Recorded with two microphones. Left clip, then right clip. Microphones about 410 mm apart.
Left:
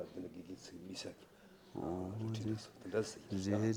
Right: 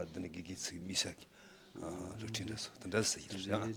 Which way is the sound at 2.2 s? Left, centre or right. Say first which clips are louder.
Right 1 dB; right.